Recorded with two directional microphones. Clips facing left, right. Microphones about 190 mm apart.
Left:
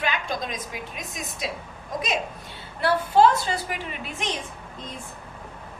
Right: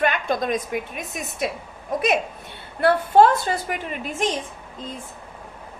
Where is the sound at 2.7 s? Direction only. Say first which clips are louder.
Right 4 dB; 55° right (ahead or behind).